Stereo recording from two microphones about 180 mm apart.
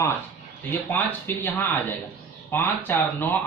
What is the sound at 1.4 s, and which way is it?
A man's voice, 10° left (ahead or behind).